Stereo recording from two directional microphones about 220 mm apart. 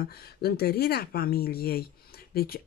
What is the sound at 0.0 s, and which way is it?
Speech, 45° left (ahead or behind).